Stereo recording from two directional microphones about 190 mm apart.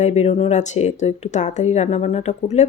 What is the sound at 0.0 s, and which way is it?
Speech, 35° left (ahead or behind).